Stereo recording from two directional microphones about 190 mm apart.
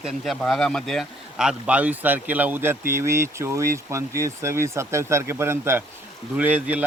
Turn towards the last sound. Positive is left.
turn(degrees=-10)  # may be behind; listen again after turning